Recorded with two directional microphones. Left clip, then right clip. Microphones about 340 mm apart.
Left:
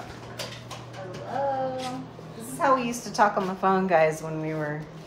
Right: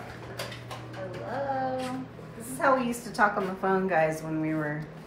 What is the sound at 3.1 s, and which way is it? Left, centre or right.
A woman's voice, centre.